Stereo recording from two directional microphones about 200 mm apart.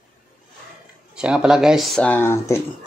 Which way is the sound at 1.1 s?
5° right (ahead or behind).